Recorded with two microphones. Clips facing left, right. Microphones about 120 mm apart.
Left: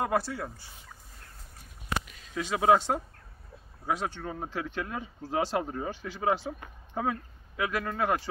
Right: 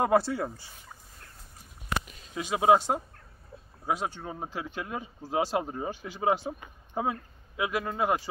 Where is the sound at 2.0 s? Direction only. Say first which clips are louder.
Even; 15° right (ahead or behind).